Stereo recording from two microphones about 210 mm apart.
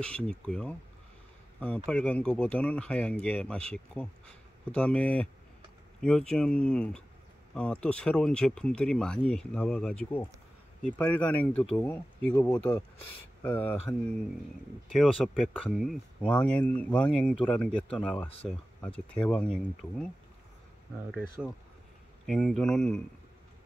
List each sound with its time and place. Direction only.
0.0 s speech: 5° left (ahead or behind)
1.9 s speech: 5° left (ahead or behind)
14.9 s speech: 5° left (ahead or behind)
22.2 s speech: centre (ahead or behind)